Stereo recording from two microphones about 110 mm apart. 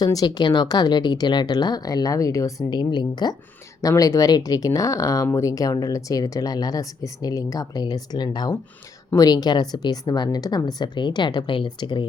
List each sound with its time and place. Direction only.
0.0 s speech: 35° left (ahead or behind)
3.8 s speech: 30° left (ahead or behind)